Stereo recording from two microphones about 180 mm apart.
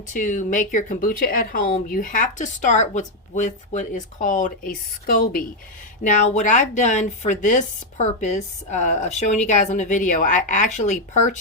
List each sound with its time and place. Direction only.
0.1 s speech: 45° left (ahead or behind)